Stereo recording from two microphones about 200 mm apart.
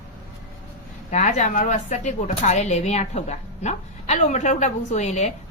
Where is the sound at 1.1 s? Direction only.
35° left (ahead or behind).